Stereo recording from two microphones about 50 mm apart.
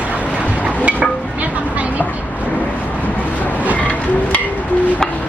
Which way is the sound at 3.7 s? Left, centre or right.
Left.